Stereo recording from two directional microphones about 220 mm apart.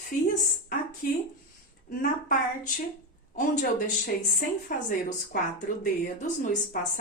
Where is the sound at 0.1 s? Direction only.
35° left (ahead or behind).